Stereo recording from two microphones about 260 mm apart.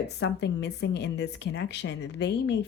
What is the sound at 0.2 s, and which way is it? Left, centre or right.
A woman's voice, left.